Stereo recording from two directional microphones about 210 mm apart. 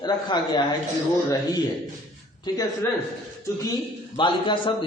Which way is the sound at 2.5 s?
20° left (ahead or behind).